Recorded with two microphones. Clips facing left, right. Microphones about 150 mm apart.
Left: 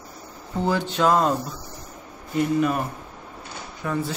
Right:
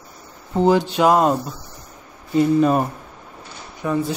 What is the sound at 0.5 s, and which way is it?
Speech, 20° right (ahead or behind).